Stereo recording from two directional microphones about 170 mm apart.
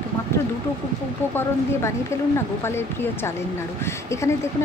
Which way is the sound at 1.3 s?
15° left (ahead or behind).